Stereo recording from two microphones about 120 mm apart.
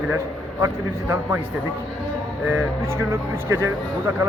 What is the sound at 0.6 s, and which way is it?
Speech, 20° right (ahead or behind).